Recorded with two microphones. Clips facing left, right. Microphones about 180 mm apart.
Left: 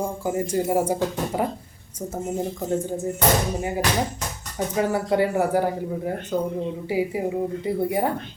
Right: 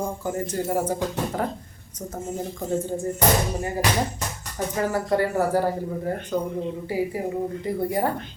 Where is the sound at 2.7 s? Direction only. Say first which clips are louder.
Right 1 dB; centre (ahead or behind).